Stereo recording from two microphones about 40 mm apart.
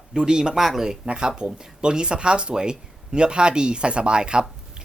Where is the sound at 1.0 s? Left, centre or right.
Right.